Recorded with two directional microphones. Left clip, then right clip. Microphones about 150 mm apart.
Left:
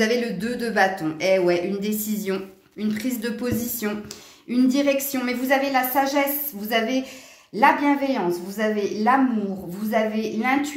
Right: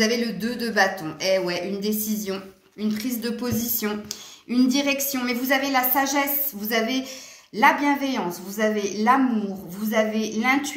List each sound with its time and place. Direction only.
0.0 s a woman's voice: 50° left (ahead or behind); by 6.2 s 25° left (ahead or behind)
7.5 s a woman's voice: 35° left (ahead or behind)